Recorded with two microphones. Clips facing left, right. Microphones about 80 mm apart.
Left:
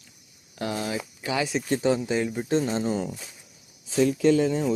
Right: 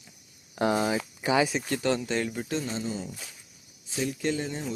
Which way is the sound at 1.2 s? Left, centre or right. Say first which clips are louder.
Right 4 dB; right.